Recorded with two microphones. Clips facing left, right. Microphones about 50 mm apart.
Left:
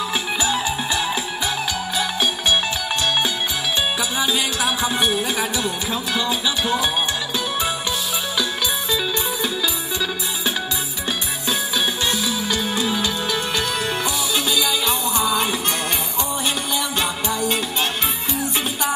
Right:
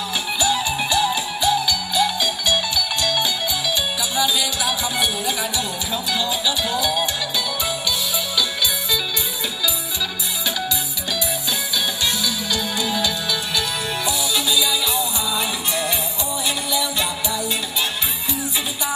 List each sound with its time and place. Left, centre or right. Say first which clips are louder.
0.4 s music: right 4 dB; left
11.7 s music: even; left
16.4 s music: even; left